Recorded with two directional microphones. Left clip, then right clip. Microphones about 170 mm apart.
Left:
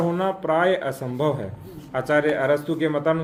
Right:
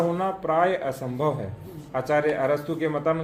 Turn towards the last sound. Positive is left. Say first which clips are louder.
# left 3 dB
turn(degrees=35)  # may be behind; listen again after turning